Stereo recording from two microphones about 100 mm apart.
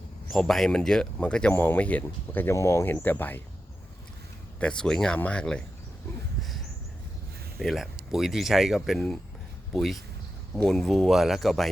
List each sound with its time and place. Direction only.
0.3 s speech: 5° left (ahead or behind)
4.6 s speech: 10° left (ahead or behind)
7.6 s speech: centre (ahead or behind)